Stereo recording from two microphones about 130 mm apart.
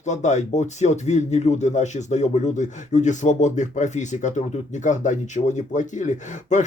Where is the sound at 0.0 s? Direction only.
65° left (ahead or behind).